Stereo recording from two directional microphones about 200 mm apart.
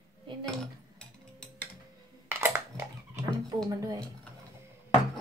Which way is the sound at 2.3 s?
10° right (ahead or behind).